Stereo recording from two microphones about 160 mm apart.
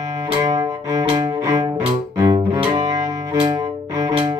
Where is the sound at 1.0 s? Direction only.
20° right (ahead or behind).